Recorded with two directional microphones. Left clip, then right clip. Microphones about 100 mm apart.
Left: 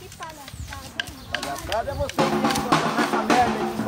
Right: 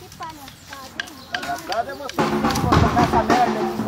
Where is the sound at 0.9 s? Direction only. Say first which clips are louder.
Right 1 dB; 15° left (ahead or behind).